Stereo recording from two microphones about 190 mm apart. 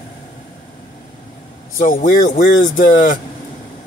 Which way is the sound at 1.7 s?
45° left (ahead or behind).